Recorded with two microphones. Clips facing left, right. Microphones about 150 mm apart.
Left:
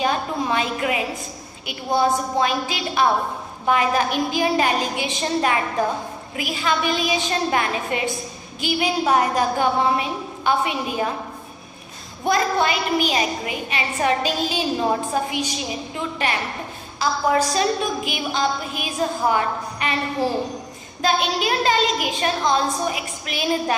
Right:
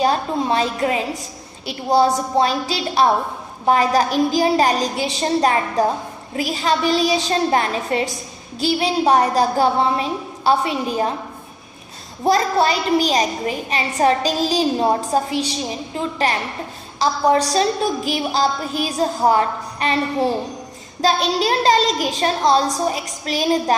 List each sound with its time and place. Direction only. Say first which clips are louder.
0.0 s a woman's voice: right 4 dB; 35° right (ahead or behind)
12.2 s a woman's voice: right 3 dB; 35° right (ahead or behind)